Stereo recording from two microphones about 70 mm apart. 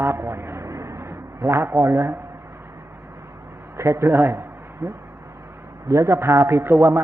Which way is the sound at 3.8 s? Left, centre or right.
Right.